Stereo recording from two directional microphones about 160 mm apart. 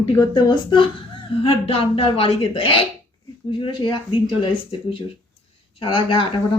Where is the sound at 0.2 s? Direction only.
30° left (ahead or behind).